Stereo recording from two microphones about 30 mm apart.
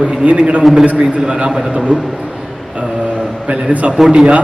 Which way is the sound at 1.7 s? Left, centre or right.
Right.